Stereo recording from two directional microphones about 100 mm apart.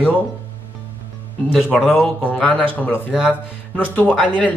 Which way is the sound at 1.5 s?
5° right (ahead or behind).